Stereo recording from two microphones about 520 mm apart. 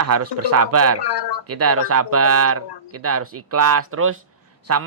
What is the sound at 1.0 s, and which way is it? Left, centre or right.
Speech, left.